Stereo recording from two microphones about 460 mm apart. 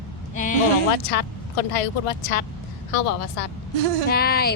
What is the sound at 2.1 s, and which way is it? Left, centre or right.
Speech, left.